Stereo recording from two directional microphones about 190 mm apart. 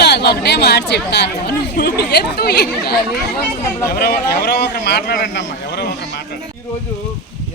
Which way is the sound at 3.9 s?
55° left (ahead or behind).